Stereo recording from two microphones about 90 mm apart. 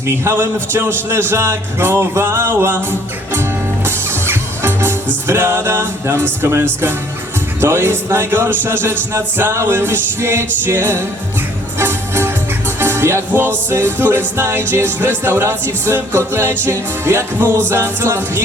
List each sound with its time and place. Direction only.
0.3 s music: 25° right (ahead or behind)
3.8 s music: 25° right (ahead or behind)